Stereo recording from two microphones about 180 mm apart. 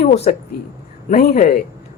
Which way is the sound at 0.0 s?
40° left (ahead or behind).